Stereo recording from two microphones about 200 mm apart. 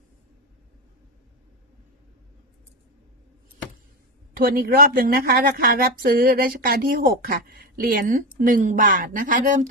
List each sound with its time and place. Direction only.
4.4 s a woman's voice: 45° right (ahead or behind)